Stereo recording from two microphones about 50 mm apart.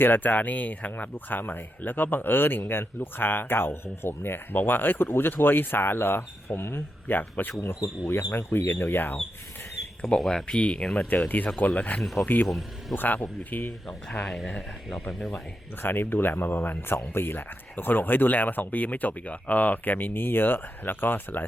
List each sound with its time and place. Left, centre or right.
0.0 s speech: left
7.6 s speech: left
10.2 s speech: centre
11.3 s speech: left
12.2 s speech: left
12.5 s speech: centre
13.0 s speech: left
14.3 s speech: centre
15.8 s speech: left